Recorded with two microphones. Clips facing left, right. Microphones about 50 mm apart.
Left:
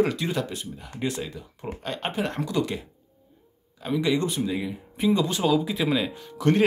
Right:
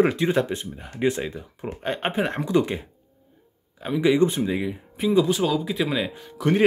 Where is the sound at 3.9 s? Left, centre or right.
Centre.